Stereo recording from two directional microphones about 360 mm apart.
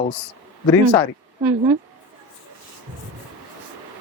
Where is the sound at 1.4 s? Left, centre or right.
Centre.